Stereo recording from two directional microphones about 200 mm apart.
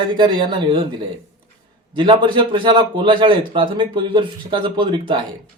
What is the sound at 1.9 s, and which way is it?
Speech, 25° right (ahead or behind).